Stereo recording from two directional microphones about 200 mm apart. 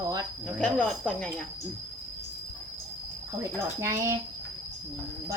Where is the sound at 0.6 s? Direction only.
5° left (ahead or behind).